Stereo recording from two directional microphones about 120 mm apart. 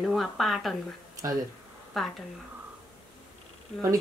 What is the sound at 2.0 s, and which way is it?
Speech, centre (ahead or behind).